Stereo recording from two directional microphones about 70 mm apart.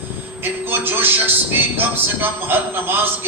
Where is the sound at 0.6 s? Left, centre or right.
Right.